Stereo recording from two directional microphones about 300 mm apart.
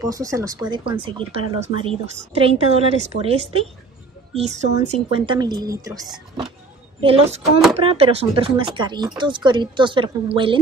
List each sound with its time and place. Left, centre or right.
0.0 s a woman's voice: centre